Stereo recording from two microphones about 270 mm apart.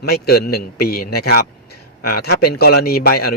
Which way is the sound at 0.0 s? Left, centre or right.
Left.